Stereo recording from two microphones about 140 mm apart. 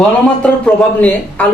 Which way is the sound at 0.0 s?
5° left (ahead or behind).